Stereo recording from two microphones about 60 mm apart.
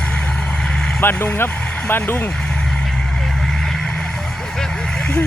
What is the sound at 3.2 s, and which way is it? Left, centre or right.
Vehicle, centre.